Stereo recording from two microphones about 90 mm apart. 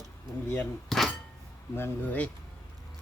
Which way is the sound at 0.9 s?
5° left (ahead or behind).